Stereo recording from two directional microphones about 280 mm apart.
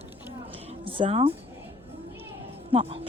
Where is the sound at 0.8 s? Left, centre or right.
Centre.